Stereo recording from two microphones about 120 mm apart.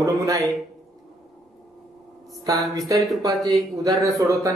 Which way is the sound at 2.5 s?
30° right (ahead or behind).